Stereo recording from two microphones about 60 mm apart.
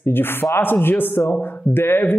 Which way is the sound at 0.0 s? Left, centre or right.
Left.